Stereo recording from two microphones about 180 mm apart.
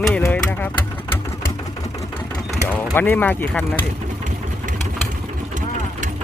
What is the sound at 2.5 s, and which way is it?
Speech, 10° left (ahead or behind).